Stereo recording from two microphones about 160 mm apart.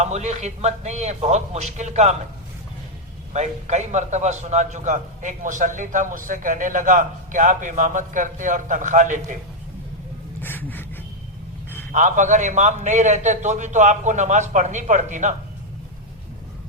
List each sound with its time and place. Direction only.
0.0 s a man's voice: 45° right (ahead or behind)
3.3 s a man's voice: 45° right (ahead or behind)
10.4 s a sound: 10° left (ahead or behind)
11.9 s a man's voice: 50° right (ahead or behind)